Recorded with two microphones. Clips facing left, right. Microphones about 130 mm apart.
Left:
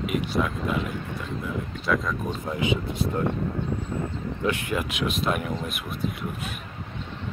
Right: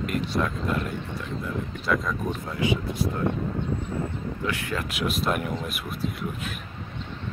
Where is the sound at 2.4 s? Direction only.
20° left (ahead or behind).